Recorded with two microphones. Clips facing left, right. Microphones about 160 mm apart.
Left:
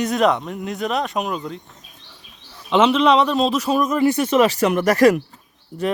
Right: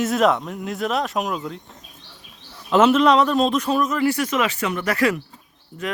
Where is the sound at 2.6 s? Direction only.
5° right (ahead or behind).